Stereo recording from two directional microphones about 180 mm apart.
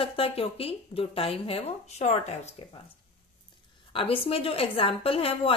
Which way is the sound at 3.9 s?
30° left (ahead or behind).